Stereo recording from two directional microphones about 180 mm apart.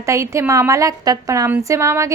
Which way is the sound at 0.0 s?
15° right (ahead or behind).